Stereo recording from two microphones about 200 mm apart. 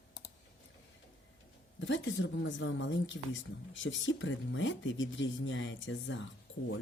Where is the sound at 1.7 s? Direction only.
65° left (ahead or behind).